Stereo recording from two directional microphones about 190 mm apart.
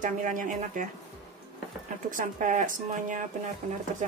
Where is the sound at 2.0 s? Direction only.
45° right (ahead or behind).